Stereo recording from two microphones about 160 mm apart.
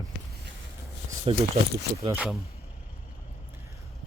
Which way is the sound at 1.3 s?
35° right (ahead or behind).